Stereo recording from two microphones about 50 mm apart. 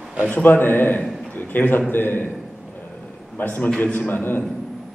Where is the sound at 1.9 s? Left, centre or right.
Left.